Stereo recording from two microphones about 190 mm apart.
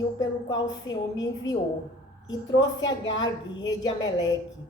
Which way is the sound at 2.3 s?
20° left (ahead or behind).